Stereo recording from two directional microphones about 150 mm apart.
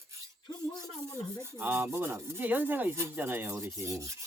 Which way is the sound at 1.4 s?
15° right (ahead or behind).